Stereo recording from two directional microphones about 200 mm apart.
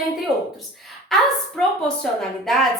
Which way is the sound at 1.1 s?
Centre (ahead or behind).